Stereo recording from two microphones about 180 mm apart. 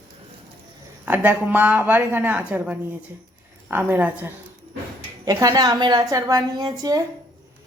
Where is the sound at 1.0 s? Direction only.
10° right (ahead or behind).